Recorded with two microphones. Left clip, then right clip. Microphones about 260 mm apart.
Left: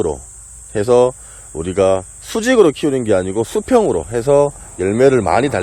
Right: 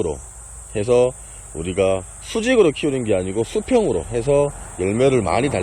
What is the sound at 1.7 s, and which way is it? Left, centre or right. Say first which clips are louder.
Speech: left 5 dB; left.